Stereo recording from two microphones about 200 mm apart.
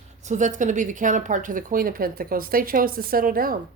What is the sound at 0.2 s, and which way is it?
Speech, 35° right (ahead or behind).